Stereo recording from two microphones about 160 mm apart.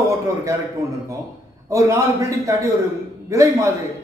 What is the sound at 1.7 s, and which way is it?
A man's voice, 20° right (ahead or behind).